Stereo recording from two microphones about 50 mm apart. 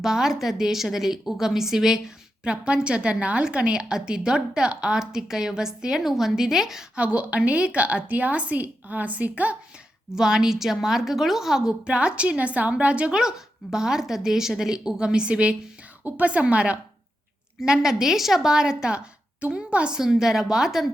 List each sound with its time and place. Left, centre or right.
0.0 s a woman's voice: centre
6.9 s a woman's voice: right
10.2 s a woman's voice: centre
11.9 s a woman's voice: right
17.6 s a woman's voice: centre
20.0 s a woman's voice: centre